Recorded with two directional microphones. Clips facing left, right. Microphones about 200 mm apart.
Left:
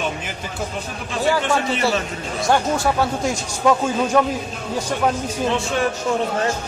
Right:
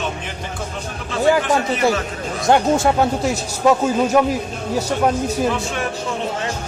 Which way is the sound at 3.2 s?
5° right (ahead or behind).